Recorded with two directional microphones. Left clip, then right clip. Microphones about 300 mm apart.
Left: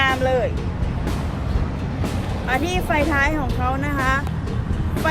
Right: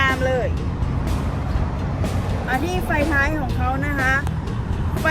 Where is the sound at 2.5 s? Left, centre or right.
Left.